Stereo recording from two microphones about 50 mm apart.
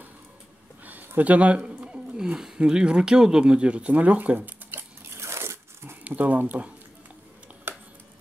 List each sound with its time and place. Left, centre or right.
0.8 s a sound: right
1.9 s speech: centre; by 5.2 s right
5.2 s crunch: right
6.0 s speech: right